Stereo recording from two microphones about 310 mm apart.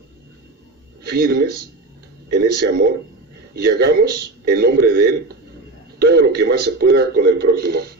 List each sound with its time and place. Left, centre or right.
1.0 s a man's voice: right